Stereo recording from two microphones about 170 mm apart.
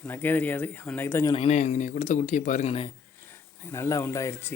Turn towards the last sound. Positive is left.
turn(degrees=15)  # may be behind; listen again after turning